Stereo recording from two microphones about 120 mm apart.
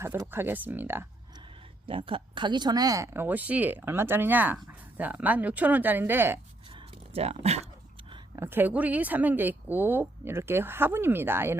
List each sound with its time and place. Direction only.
0.3 s a woman's voice: 15° right (ahead or behind)
1.9 s a woman's voice: 50° right (ahead or behind); by 6.4 s 20° right (ahead or behind)
6.7 s a sound: 55° right (ahead or behind)
8.4 s a woman's voice: 15° right (ahead or behind)